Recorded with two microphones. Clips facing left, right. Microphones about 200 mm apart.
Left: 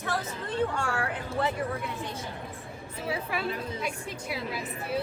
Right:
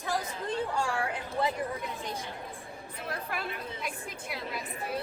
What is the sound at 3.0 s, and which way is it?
A woman's voice, 5° left (ahead or behind).